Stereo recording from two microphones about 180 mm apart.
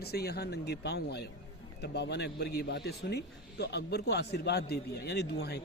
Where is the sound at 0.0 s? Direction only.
60° left (ahead or behind).